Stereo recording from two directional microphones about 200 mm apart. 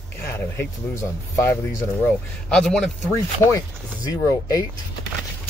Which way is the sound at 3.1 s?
15° left (ahead or behind).